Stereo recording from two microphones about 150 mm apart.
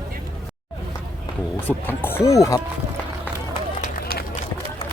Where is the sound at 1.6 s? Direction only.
15° left (ahead or behind).